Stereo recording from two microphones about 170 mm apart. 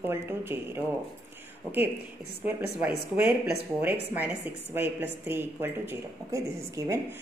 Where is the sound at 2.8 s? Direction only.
10° right (ahead or behind).